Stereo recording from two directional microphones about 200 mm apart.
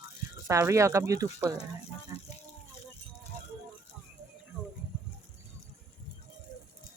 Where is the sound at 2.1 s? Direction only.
15° right (ahead or behind).